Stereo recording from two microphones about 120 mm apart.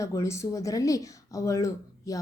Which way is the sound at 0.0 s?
25° left (ahead or behind).